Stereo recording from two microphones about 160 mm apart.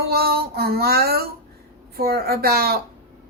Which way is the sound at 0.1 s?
75° right (ahead or behind).